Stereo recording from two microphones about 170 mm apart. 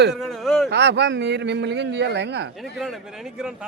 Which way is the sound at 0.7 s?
90° right.